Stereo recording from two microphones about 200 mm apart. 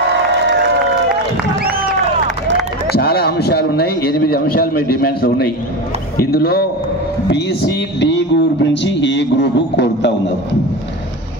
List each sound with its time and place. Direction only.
1.6 s crowd: 50° right (ahead or behind)
3.0 s a man's voice: 50° left (ahead or behind)